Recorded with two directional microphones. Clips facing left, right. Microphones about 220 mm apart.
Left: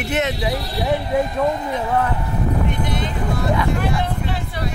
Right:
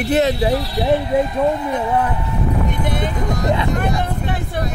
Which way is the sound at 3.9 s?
50° right (ahead or behind).